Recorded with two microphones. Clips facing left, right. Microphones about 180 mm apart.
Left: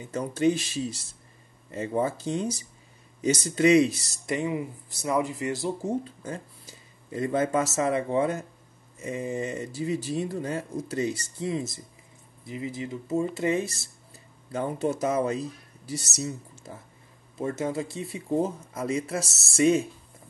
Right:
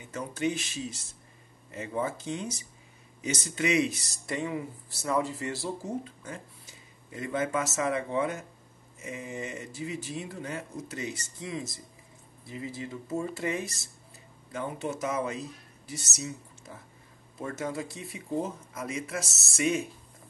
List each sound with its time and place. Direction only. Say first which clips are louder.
0.1 s speech: left 6 dB; 35° left (ahead or behind)
4.3 s speech: left 4 dB; 15° left (ahead or behind); by 16.7 s 35° left (ahead or behind)
17.4 s speech: left 5 dB; 25° left (ahead or behind)